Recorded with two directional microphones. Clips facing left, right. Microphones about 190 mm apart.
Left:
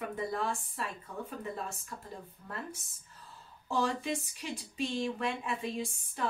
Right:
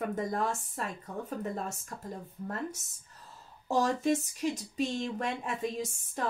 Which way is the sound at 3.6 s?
40° right (ahead or behind).